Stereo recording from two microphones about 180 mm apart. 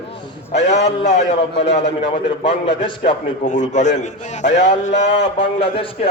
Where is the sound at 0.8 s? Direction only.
40° left (ahead or behind).